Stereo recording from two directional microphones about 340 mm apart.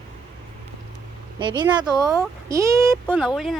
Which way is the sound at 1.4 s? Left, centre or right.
Centre.